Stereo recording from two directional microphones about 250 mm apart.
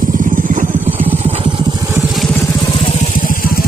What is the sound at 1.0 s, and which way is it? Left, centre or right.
Vehicle, right.